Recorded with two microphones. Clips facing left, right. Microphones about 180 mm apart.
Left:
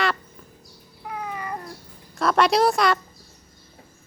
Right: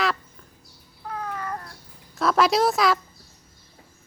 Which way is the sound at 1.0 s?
10° left (ahead or behind).